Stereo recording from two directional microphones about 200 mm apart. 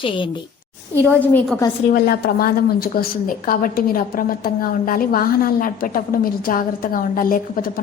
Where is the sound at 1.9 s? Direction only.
50° left (ahead or behind).